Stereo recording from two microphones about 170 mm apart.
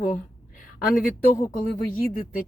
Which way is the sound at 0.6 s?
55° left (ahead or behind).